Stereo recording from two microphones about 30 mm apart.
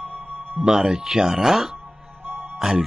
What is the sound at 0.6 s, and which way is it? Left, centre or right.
Speech, right.